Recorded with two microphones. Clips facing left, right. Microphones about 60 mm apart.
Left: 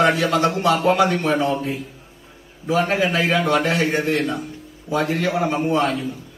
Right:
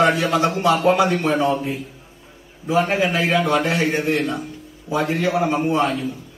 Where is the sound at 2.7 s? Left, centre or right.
Right.